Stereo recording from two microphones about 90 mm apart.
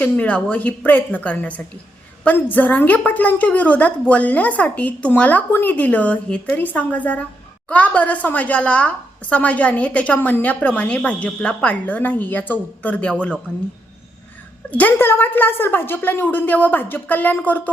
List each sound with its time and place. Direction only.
0.0 s a woman's voice: 15° left (ahead or behind)
14.7 s a woman's voice: 20° left (ahead or behind)